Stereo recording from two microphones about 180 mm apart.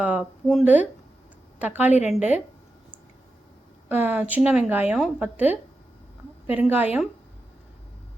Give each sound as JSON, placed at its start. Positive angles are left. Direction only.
{"t": 0.0, "sound": "a woman's voice", "side_deg": -5}
{"t": 1.9, "sound": "a woman's voice", "side_deg": 40}
{"t": 2.1, "sound": "a woman's voice", "side_deg": -10}
{"t": 3.8, "sound": "a woman's voice", "side_deg": -10}
{"t": 6.7, "sound": "a woman's voice", "side_deg": -10}